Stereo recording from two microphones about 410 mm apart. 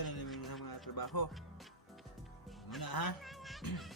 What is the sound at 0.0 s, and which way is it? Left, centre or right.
Music, left.